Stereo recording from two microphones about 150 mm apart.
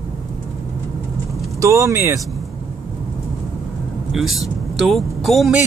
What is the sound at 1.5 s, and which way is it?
Speech, 20° right (ahead or behind).